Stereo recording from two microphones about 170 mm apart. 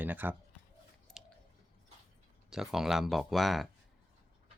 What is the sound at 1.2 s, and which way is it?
Chewing, 5° right (ahead or behind).